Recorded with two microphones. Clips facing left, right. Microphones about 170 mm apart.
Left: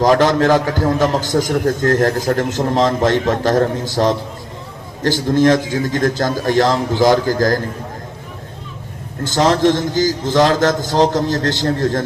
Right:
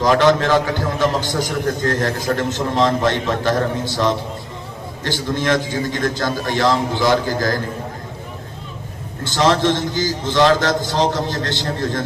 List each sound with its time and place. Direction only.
0.0 s a man's voice: 45° left (ahead or behind)
9.3 s a man's voice: 40° left (ahead or behind)